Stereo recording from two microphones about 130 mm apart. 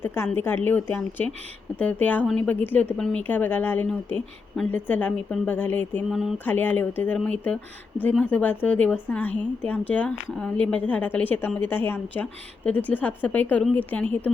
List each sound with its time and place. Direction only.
0.0 s a sound: 20° left (ahead or behind)
0.3 s a woman's voice: 15° left (ahead or behind)
6.1 s speech: centre (ahead or behind)
6.4 s a woman's voice: 15° left (ahead or behind)